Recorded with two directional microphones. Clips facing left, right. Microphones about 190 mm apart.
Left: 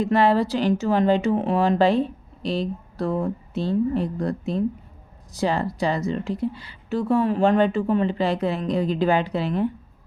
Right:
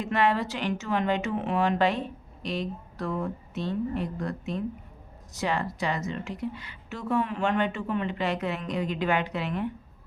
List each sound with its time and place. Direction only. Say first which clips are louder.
0.0 s speech: left 7 dB; 35° left (ahead or behind)